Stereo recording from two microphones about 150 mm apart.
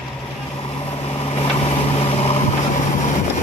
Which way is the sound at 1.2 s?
40° left (ahead or behind).